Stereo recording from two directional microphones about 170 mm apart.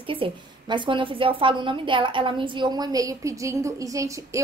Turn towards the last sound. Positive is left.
turn(degrees=-20)  # may be behind; listen again after turning